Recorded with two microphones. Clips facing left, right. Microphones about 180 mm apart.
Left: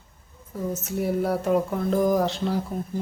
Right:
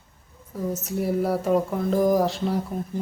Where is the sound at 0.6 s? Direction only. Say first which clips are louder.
Right 1 dB; centre (ahead or behind).